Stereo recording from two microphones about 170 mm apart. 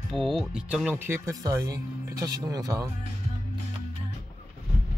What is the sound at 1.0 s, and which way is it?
Speech, 15° right (ahead or behind).